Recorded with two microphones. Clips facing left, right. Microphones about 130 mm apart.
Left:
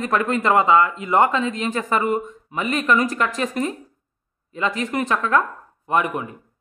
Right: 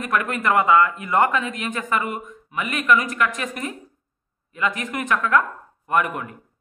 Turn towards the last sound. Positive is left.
turn(degrees=20)  # may be behind; listen again after turning